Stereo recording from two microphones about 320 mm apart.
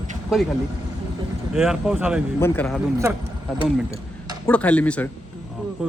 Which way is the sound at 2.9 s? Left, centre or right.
Centre.